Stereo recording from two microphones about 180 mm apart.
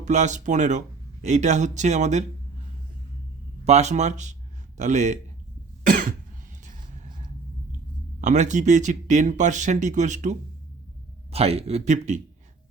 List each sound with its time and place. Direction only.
0.0 s speech: 40° right (ahead or behind)
3.6 s speech: 40° right (ahead or behind)
5.8 s cough: 50° right (ahead or behind)
6.7 s a sound: 45° right (ahead or behind)
8.2 s speech: 40° right (ahead or behind)